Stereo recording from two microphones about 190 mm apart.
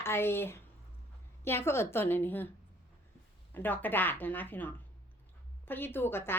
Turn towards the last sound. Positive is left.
turn(degrees=10)  # may be behind; listen again after turning